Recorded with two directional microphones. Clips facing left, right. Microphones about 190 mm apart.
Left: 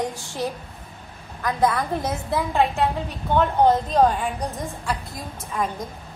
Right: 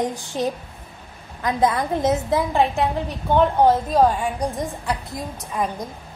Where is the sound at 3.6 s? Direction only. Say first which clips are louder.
Right 1 dB; 10° right (ahead or behind).